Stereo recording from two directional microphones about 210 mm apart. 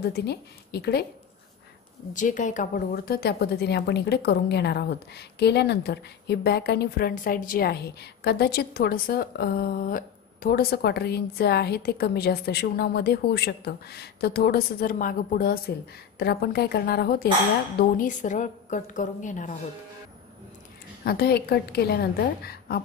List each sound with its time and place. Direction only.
0.0 s a woman's voice: 50° left (ahead or behind)
2.1 s a woman's voice: 35° left (ahead or behind)
21.0 s a woman's voice: 45° left (ahead or behind)